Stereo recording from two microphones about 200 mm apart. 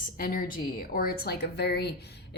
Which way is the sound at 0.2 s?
45° left (ahead or behind).